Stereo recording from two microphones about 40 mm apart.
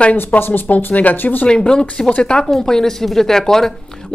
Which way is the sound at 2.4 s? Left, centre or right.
Centre.